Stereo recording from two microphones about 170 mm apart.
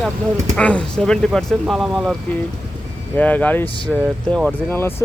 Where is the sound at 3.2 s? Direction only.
10° left (ahead or behind).